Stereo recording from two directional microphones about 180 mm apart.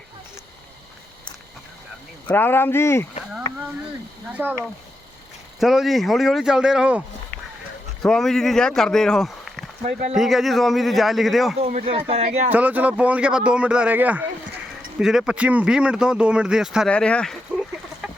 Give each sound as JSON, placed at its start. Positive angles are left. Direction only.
{"t": 2.3, "sound": "speech", "side_deg": 10}
{"t": 4.3, "sound": "a man's voice", "side_deg": -10}
{"t": 8.0, "sound": "speech", "side_deg": 5}
{"t": 9.8, "sound": "speech", "side_deg": -40}
{"t": 10.2, "sound": "speech", "side_deg": 0}
{"t": 11.6, "sound": "speech", "side_deg": -35}
{"t": 12.5, "sound": "a man's voice", "side_deg": -10}